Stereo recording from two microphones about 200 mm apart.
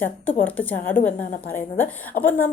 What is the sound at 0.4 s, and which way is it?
A woman's voice, 10° left (ahead or behind).